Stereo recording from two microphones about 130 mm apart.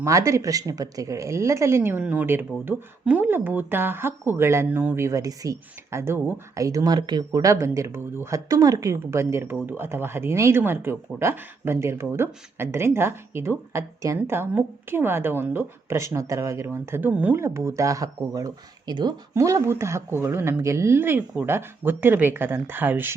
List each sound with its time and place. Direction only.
0.0 s speech: 25° right (ahead or behind)